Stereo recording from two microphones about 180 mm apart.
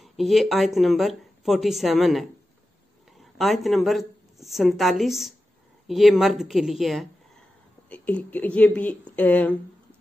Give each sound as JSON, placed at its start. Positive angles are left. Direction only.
{"t": 0.0, "sound": "a woman's voice", "side_deg": 0}